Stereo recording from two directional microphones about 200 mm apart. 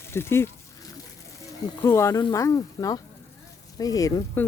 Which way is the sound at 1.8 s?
15° left (ahead or behind).